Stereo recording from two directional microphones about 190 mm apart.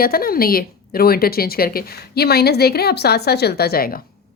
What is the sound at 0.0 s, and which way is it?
A woman's voice, 50° left (ahead or behind).